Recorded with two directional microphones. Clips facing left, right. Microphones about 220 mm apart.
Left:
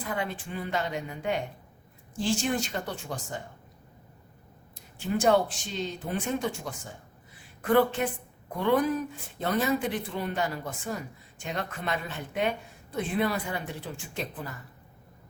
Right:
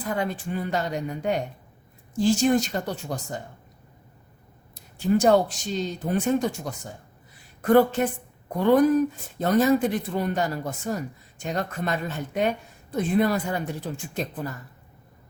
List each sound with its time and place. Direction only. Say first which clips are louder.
0.2 s speech: right 5 dB; 45° right (ahead or behind)
4.7 s a woman's voice: right 8 dB; 40° right (ahead or behind)